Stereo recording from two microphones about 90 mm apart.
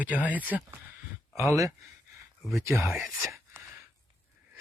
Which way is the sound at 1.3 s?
35° right (ahead or behind).